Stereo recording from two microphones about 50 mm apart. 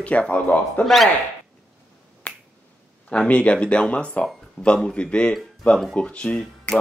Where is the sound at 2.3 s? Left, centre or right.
Left.